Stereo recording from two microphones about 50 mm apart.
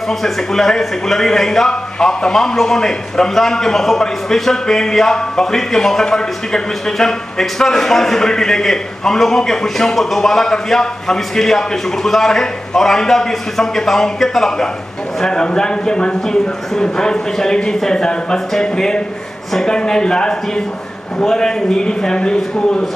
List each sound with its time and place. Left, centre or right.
0.1 s speech: centre